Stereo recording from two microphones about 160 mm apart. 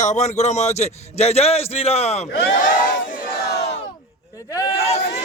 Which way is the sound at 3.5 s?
90° left.